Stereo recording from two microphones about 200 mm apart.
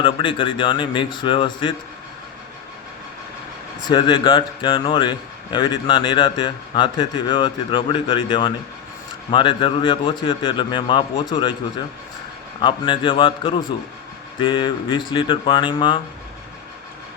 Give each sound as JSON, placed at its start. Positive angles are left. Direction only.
{"t": 0.0, "sound": "a man's voice", "side_deg": 25}
{"t": 3.8, "sound": "a man's voice", "side_deg": 20}
{"t": 12.6, "sound": "a man's voice", "side_deg": 25}